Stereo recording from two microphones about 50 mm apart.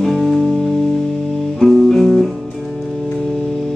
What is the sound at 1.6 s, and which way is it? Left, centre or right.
Music, centre.